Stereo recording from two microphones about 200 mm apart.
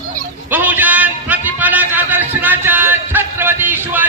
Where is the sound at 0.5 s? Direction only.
10° right (ahead or behind).